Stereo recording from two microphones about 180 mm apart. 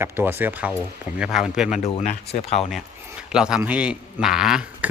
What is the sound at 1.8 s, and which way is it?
Speech, 35° left (ahead or behind).